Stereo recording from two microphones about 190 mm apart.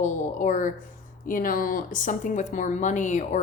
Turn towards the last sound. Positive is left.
turn(degrees=40)  # may be behind; listen again after turning